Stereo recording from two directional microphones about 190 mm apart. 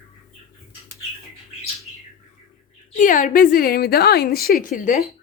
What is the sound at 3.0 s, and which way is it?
A woman's voice, 45° left (ahead or behind).